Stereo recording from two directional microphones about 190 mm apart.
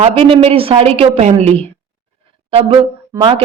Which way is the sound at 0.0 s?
30° right (ahead or behind).